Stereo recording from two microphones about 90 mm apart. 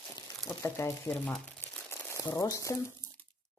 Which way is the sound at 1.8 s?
30° left (ahead or behind).